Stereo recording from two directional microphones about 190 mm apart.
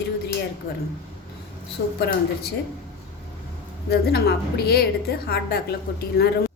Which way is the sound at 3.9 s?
55° left (ahead or behind).